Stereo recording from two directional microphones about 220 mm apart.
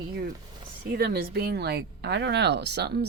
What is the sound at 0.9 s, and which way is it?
Speech, 45° right (ahead or behind).